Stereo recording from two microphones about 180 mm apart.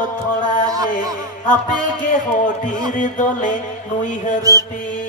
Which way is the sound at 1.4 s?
45° left (ahead or behind).